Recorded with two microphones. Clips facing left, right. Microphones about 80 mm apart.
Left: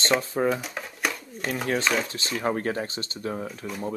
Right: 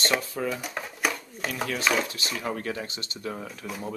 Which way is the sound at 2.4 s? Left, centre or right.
Left.